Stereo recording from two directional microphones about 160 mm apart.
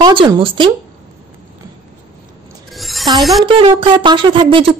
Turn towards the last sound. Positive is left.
turn(degrees=-30)  # may be behind; listen again after turning